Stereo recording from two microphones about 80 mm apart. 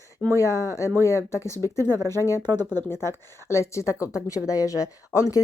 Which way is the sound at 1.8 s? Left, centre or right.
Right.